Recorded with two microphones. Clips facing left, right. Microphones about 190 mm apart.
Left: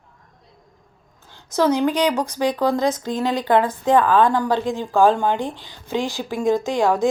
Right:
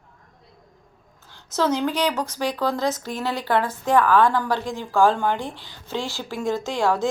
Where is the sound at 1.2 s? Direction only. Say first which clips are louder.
Left 4 dB; 15° left (ahead or behind).